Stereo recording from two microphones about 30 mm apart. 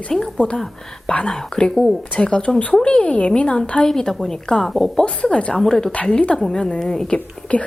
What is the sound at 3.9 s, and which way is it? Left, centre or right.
A woman's voice, centre.